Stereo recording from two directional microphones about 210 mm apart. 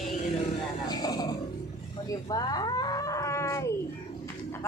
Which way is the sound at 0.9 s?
20° left (ahead or behind).